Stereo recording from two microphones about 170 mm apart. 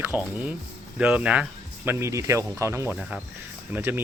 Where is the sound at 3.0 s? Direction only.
5° right (ahead or behind).